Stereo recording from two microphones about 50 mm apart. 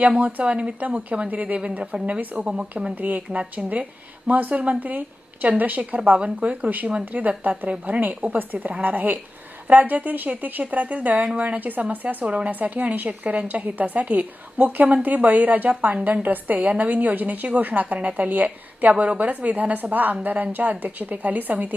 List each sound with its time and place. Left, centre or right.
0.2 s a woman's voice: right
2.9 s a woman's voice: right
6.1 s a woman's voice: right